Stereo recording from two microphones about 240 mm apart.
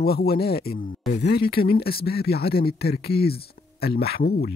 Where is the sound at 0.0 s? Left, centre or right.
Left.